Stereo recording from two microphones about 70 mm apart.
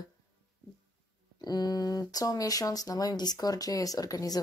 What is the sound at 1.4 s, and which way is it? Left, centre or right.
Speech, left.